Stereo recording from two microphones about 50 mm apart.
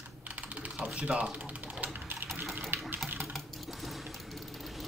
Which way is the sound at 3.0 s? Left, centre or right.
Right.